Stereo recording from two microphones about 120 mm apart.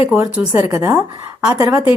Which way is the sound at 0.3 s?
15° right (ahead or behind).